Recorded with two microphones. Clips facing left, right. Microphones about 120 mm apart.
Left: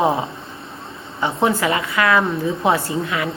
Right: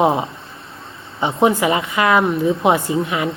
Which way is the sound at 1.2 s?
15° right (ahead or behind).